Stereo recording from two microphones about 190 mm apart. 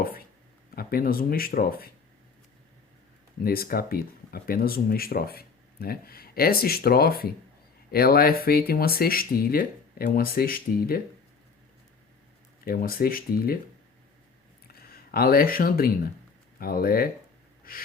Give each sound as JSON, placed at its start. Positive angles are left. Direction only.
{"t": 0.8, "sound": "speech", "side_deg": 50}
{"t": 3.4, "sound": "speech", "side_deg": 50}
{"t": 12.6, "sound": "speech", "side_deg": 50}
{"t": 14.7, "sound": "speech", "side_deg": 55}
{"t": 17.7, "sound": "snort", "side_deg": 50}